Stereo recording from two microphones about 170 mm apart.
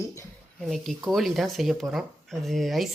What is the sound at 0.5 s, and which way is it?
A woman's voice, centre (ahead or behind).